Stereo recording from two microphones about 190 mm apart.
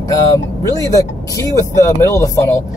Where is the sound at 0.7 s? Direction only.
20° left (ahead or behind).